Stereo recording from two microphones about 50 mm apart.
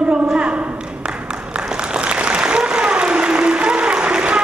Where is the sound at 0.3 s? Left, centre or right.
Right.